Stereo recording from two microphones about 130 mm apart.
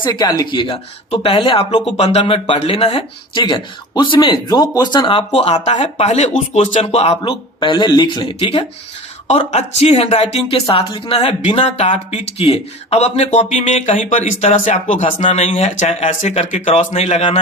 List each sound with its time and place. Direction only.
0.0 s speech: 30° left (ahead or behind)
2.0 s speech: 60° left (ahead or behind)
2.2 s speech: 45° left (ahead or behind)
3.4 s speech: 40° left (ahead or behind); by 7.2 s 55° left (ahead or behind)
7.2 s speech: 40° left (ahead or behind)
9.5 s speech: 55° left (ahead or behind)
10.8 s speech: 40° left (ahead or behind); by 15.3 s 75° left (ahead or behind)
15.3 s speech: 60° left (ahead or behind)